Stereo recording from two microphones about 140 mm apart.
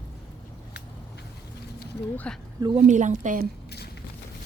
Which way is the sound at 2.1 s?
10° left (ahead or behind).